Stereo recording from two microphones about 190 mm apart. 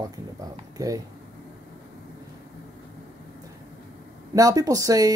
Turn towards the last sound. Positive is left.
turn(degrees=-20)  # may be behind; listen again after turning